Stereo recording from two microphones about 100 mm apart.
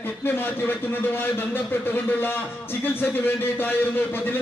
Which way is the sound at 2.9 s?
20° left (ahead or behind).